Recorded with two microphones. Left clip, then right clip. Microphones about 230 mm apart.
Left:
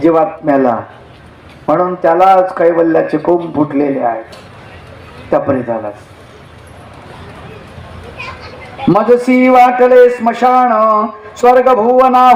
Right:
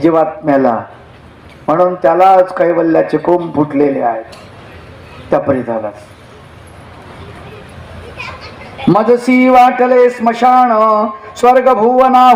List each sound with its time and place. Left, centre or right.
0.0 s a man's voice: right
5.3 s a man's voice: right
8.8 s a man's voice: right